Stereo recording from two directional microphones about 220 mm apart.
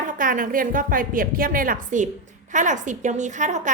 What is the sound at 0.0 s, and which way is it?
A woman's voice, 35° right (ahead or behind).